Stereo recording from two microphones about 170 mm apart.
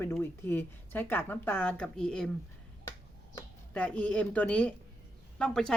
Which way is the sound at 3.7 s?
10° left (ahead or behind).